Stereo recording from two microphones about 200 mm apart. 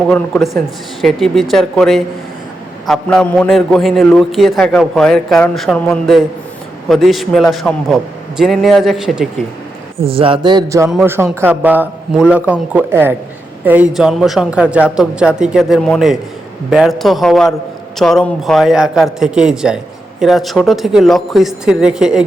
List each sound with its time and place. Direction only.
0.1 s a man's voice: 5° left (ahead or behind)
10.1 s speech: 25° right (ahead or behind)
10.8 s a man's voice: 5° right (ahead or behind)